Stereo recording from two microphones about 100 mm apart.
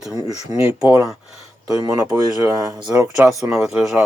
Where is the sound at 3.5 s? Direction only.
5° right (ahead or behind).